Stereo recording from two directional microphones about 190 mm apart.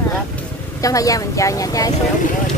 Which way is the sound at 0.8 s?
15° left (ahead or behind).